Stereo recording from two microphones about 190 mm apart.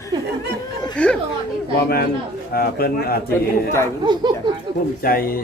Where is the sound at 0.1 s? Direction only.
20° right (ahead or behind).